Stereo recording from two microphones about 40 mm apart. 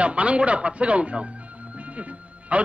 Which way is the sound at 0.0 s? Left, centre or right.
Right.